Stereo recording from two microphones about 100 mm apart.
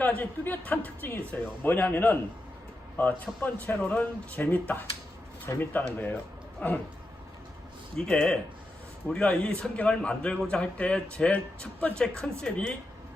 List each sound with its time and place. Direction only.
0.0 s speech: 20° left (ahead or behind)
3.4 s a man's voice: 20° left (ahead or behind)
7.9 s a man's voice: 5° left (ahead or behind)